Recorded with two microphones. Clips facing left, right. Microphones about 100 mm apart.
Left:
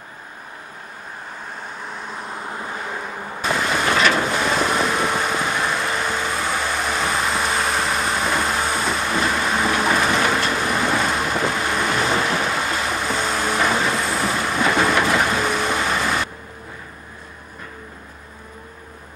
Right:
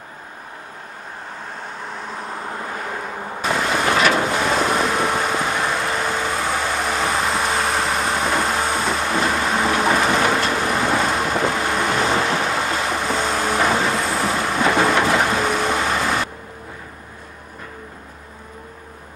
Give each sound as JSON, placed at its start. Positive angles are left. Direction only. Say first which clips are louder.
{"t": 1.5, "sound": "vehicle", "louder": "right 1 dB", "side_deg": -85}
{"t": 2.2, "sound": "vehicle", "louder": "right 1 dB", "side_deg": -45}
{"t": 3.2, "sound": "vehicle", "louder": "right 1 dB", "side_deg": -40}
{"t": 3.8, "sound": "vehicle", "louder": "right 1 dB", "side_deg": -20}
{"t": 4.1, "sound": "vehicle", "louder": "right 1 dB", "side_deg": -40}
{"t": 5.4, "sound": "vehicle", "louder": "right 1 dB", "side_deg": -35}
{"t": 5.8, "sound": "vehicle", "louder": "right 1 dB", "side_deg": -50}